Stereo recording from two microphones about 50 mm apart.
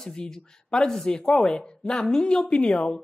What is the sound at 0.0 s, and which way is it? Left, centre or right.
Speech, centre.